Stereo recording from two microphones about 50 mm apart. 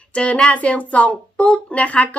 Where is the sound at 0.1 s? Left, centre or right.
Left.